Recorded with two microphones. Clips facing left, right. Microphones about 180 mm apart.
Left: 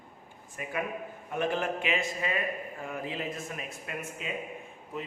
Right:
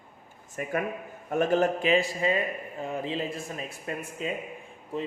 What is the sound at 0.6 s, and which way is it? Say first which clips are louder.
A man's voice: right 4 dB; 45° right (ahead or behind).